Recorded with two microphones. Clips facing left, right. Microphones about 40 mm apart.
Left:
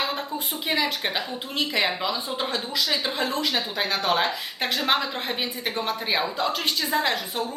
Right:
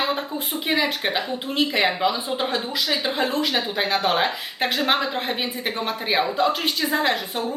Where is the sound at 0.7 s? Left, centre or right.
Centre.